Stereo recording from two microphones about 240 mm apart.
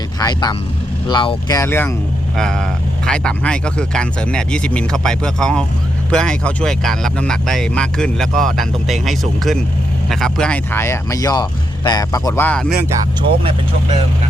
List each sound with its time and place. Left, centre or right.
0.2 s speech: centre
13.4 s speech: right